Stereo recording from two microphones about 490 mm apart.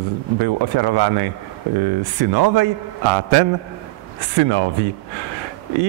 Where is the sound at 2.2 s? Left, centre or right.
Right.